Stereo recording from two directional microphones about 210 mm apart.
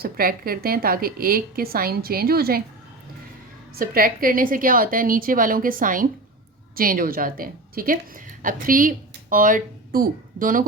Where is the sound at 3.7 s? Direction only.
45° right (ahead or behind).